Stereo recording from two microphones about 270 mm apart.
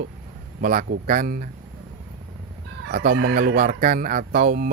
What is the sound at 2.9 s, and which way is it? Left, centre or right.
Speech, right.